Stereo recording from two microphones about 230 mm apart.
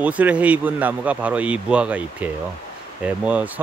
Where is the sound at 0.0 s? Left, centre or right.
Centre.